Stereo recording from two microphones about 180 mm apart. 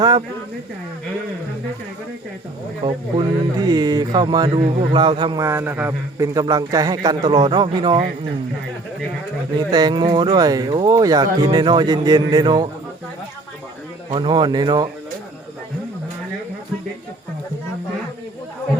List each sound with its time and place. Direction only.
2.8 s a man's voice: 25° right (ahead or behind)
9.7 s a man's voice: 25° right (ahead or behind)
14.1 s a man's voice: 25° right (ahead or behind)